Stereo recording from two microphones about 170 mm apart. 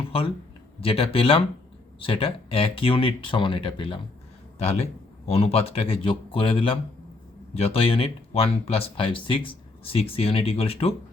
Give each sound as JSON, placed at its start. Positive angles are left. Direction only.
{"t": 0.8, "sound": "speech", "side_deg": 35}